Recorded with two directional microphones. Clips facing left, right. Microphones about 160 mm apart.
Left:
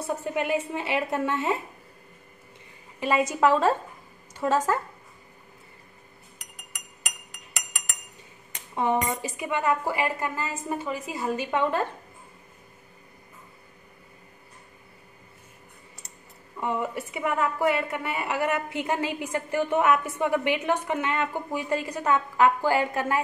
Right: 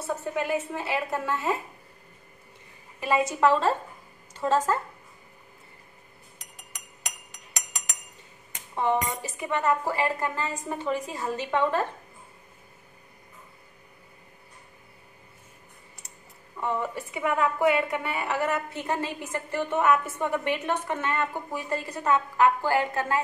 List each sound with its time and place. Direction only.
0.0 s a woman's voice: 15° left (ahead or behind)
3.0 s a woman's voice: 15° left (ahead or behind)
8.7 s a woman's voice: 15° left (ahead or behind)
16.5 s a woman's voice: 15° left (ahead or behind)